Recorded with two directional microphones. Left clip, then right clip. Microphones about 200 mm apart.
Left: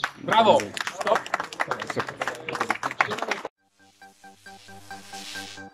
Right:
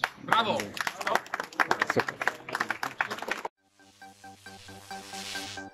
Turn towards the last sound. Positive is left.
turn(degrees=0)  # may be behind; listen again after turning